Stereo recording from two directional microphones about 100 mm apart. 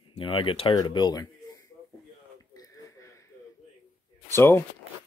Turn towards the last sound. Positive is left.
turn(degrees=25)  # may be behind; listen again after turning